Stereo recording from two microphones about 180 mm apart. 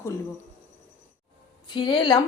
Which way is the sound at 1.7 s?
25° left (ahead or behind).